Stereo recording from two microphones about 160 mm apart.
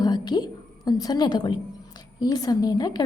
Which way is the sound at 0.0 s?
25° left (ahead or behind).